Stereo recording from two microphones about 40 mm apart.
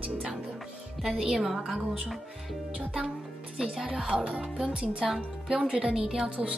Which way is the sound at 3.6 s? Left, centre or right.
Centre.